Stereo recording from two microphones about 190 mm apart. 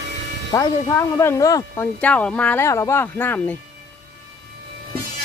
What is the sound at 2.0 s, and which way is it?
Speech, 5° left (ahead or behind).